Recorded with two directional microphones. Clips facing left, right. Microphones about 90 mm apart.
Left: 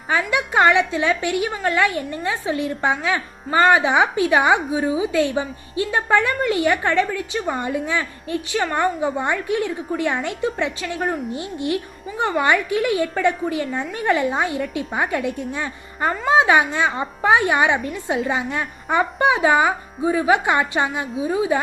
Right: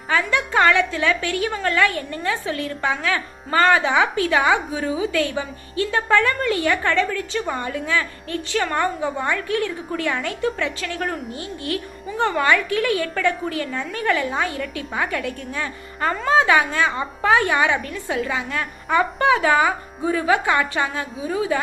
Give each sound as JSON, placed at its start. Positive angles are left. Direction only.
{"t": 0.1, "sound": "a woman's voice", "side_deg": 15}